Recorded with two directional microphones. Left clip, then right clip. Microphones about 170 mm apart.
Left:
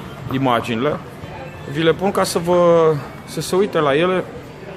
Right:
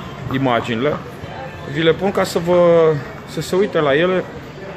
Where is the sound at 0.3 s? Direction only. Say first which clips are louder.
Even; 10° left (ahead or behind).